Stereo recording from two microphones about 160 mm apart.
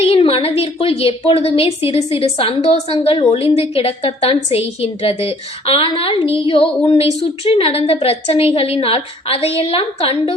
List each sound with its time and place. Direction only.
0.0 s a woman's voice: 35° left (ahead or behind)